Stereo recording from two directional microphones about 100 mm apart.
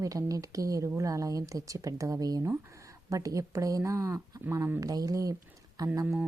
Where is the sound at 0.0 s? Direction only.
35° right (ahead or behind).